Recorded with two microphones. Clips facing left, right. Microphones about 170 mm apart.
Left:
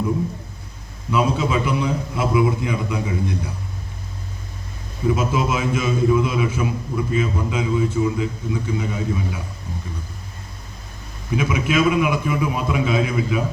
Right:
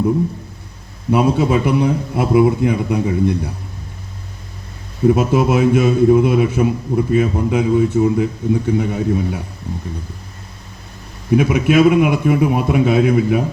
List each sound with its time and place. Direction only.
1.1 s a man's voice: 60° right (ahead or behind)
5.0 s a man's voice: 60° right (ahead or behind)
11.3 s a man's voice: 55° right (ahead or behind)